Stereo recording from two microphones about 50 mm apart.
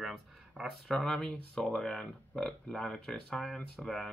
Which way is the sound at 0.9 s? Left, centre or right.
Centre.